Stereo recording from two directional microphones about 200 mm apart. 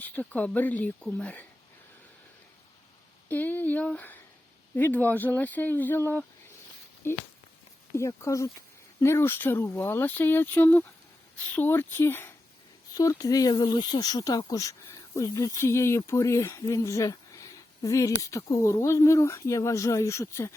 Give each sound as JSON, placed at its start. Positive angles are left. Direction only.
{"t": 0.0, "sound": "speech", "side_deg": 5}
{"t": 3.2, "sound": "speech", "side_deg": 10}